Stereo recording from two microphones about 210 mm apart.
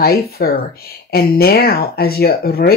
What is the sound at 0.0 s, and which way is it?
Speech, 45° left (ahead or behind).